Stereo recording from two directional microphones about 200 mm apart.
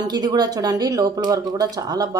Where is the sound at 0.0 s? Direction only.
20° right (ahead or behind).